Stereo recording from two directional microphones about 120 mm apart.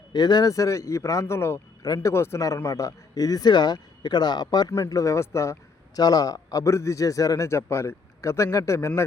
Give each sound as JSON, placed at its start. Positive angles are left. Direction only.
{"t": 0.1, "sound": "speech", "side_deg": 35}